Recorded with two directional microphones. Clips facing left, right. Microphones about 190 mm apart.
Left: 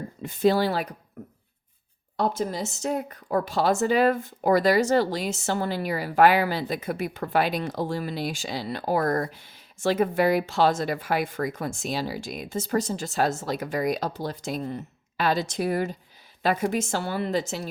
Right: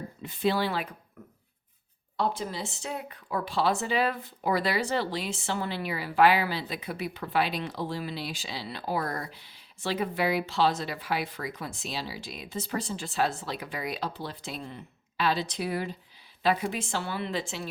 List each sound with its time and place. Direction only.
0.2 s speech: 45° left (ahead or behind)
2.1 s speech: 45° left (ahead or behind)